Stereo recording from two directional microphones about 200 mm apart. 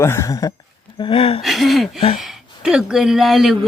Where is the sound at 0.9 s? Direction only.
25° left (ahead or behind).